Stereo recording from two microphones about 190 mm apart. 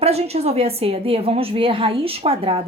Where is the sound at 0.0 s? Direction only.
30° right (ahead or behind).